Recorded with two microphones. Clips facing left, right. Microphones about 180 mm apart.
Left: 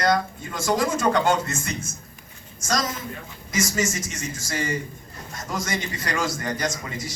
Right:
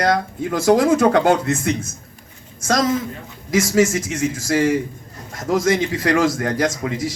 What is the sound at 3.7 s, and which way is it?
A man's voice, 65° right (ahead or behind).